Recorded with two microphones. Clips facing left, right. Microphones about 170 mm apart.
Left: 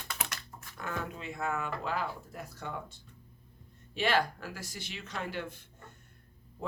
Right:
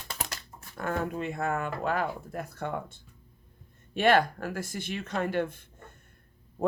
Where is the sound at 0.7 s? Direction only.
50° right (ahead or behind).